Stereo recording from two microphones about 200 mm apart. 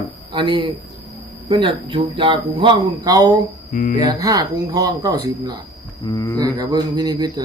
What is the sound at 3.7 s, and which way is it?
Speech, 40° left (ahead or behind).